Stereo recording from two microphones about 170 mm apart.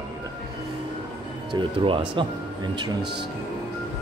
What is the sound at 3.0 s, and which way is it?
Speech, 75° right (ahead or behind).